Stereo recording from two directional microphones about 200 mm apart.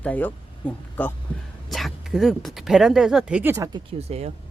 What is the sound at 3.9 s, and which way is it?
Speech, 30° right (ahead or behind).